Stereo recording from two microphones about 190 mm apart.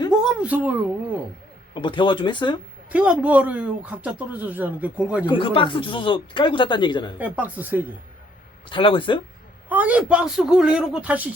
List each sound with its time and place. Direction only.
0.2 s a woman's voice: 5° right (ahead or behind)
1.7 s speech: 25° left (ahead or behind)
2.9 s speech: 5° right (ahead or behind)
5.2 s speech: 25° left (ahead or behind)
7.2 s speech: 10° right (ahead or behind)
8.7 s speech: 25° left (ahead or behind)
9.6 s a man's voice: 10° right (ahead or behind)